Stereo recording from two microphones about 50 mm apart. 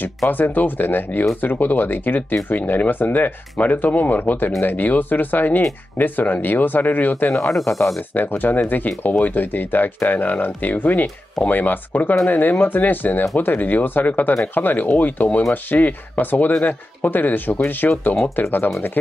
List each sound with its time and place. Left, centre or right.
0.3 s speech: left
7.5 s speech: centre
8.1 s speech: left